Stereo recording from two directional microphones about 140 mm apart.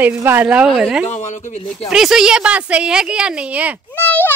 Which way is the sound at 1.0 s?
55° left (ahead or behind).